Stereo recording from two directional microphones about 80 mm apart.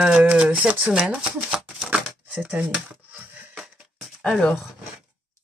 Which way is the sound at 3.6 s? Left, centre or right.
Centre.